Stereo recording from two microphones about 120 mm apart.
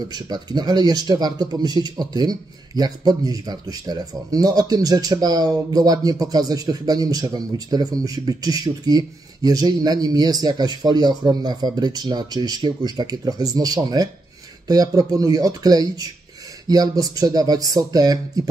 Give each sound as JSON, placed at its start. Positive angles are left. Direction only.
{"t": 0.1, "sound": "speech", "side_deg": -35}